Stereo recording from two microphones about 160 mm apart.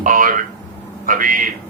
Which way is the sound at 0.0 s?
60° right (ahead or behind).